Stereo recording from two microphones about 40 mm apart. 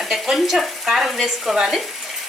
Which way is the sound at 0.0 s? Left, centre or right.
Centre.